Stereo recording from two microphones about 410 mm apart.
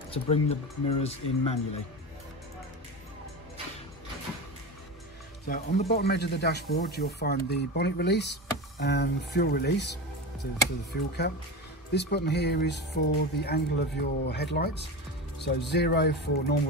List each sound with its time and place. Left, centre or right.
0.1 s speech: centre
5.5 s speech: left